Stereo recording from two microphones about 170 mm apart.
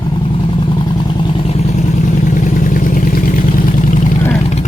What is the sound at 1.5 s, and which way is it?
Vehicle, 40° left (ahead or behind).